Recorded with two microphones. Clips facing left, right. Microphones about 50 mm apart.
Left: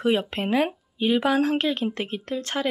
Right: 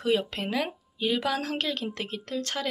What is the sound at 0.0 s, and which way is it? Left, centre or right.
Speech, left.